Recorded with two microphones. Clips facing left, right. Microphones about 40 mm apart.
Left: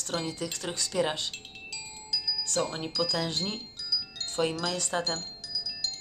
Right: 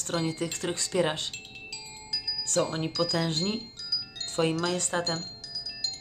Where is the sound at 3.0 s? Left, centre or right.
Right.